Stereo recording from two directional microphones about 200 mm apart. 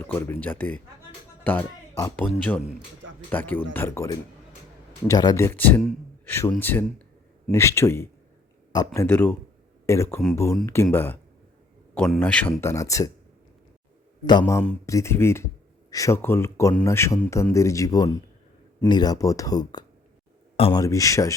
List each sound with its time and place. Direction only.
0.0 s speech: 10° left (ahead or behind)
14.3 s speech: 20° left (ahead or behind)
20.8 s speech: 15° left (ahead or behind)